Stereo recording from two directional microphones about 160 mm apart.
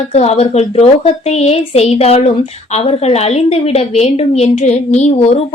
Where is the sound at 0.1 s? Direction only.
40° left (ahead or behind).